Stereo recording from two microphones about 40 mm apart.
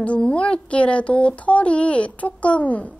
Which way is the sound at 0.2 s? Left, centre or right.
Left.